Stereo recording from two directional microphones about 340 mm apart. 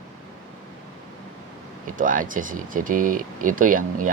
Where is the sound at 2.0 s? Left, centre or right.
Right.